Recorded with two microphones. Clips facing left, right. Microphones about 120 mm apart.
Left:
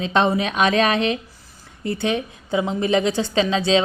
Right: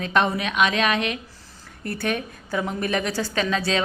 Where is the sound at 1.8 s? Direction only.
20° left (ahead or behind).